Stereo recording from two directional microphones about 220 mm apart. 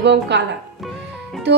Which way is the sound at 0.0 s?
50° right (ahead or behind).